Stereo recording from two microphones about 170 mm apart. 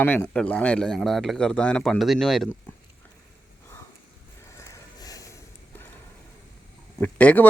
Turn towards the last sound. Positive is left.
turn(degrees=10)  # may be behind; listen again after turning